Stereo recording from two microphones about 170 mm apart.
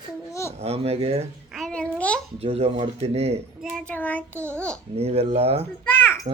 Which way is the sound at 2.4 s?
35° right (ahead or behind).